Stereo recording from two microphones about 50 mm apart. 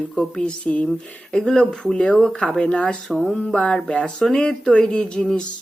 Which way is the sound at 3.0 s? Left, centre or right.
Centre.